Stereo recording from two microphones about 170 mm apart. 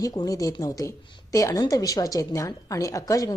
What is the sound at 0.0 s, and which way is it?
Speech, 20° left (ahead or behind).